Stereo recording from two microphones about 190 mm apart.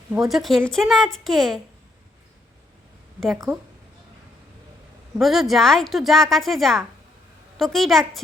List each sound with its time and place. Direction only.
0.1 s a woman's voice: centre (ahead or behind)
3.3 s a woman's voice: 15° right (ahead or behind)
5.1 s a woman's voice: centre (ahead or behind)